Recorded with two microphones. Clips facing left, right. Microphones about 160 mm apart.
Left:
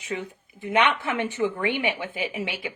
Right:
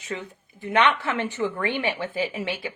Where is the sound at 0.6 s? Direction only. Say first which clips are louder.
Right 1 dB; 15° left (ahead or behind).